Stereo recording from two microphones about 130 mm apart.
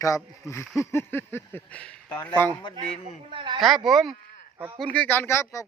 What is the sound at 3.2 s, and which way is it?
Speech, 40° right (ahead or behind).